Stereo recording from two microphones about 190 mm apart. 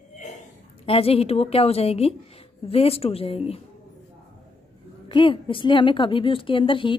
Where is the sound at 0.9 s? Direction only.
30° left (ahead or behind).